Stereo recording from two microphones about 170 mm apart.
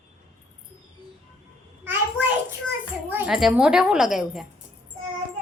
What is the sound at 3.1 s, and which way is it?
A woman's voice, 5° right (ahead or behind).